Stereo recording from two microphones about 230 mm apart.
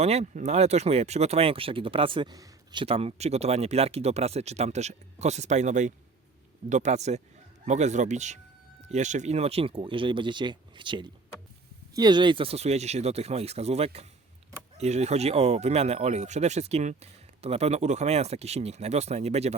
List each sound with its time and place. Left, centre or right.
0.0 s speech: right